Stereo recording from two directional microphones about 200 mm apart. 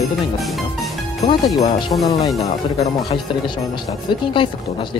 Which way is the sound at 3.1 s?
25° left (ahead or behind).